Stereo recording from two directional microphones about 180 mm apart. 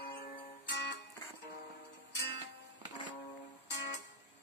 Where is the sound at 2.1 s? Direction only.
65° left (ahead or behind).